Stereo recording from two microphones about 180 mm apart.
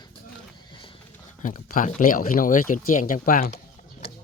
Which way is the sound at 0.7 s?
25° left (ahead or behind).